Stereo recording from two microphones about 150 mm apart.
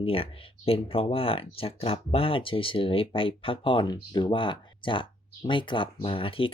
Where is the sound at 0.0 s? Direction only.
40° left (ahead or behind).